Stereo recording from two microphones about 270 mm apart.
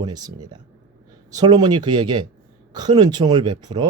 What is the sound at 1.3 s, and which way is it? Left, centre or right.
A man's voice, centre.